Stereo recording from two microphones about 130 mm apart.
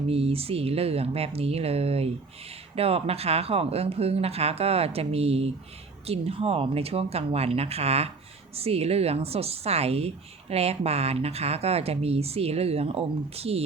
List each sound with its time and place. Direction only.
0.1 s speech: 50° right (ahead or behind)